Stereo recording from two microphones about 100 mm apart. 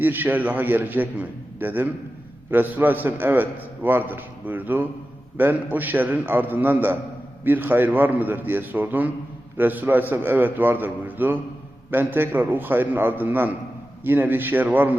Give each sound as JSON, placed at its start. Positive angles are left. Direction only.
{"t": 0.0, "sound": "a man's voice", "side_deg": -20}